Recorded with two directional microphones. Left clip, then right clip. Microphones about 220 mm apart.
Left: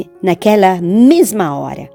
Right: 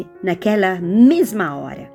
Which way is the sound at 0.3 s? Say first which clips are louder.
Left 8 dB; 35° left (ahead or behind).